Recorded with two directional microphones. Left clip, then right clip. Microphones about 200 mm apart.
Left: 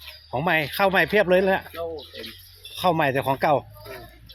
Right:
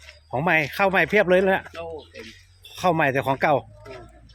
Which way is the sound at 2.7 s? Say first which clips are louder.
Right 1 dB; 15° right (ahead or behind).